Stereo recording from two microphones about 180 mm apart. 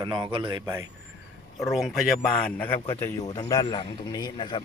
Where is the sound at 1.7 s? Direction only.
Centre (ahead or behind).